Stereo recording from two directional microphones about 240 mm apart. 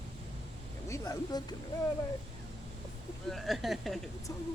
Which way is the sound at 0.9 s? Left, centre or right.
Centre.